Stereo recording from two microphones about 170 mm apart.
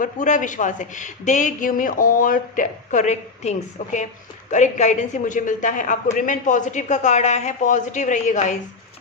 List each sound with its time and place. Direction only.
0.0 s a woman's voice: 50° left (ahead or behind)